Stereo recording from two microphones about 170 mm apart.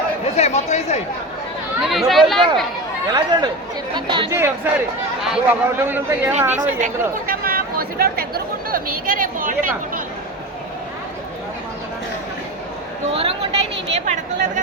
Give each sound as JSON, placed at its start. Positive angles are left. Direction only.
{"t": 0.3, "sound": "speech", "side_deg": 40}
{"t": 1.8, "sound": "speech", "side_deg": 0}
{"t": 3.1, "sound": "speech", "side_deg": -25}
{"t": 4.3, "sound": "speech", "side_deg": -15}
{"t": 7.3, "sound": "chatter", "side_deg": -60}
{"t": 13.1, "sound": "a woman's voice", "side_deg": -35}
{"t": 14.0, "sound": "speech", "side_deg": -50}